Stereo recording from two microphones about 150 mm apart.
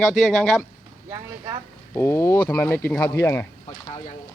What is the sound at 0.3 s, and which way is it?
Speech, centre (ahead or behind).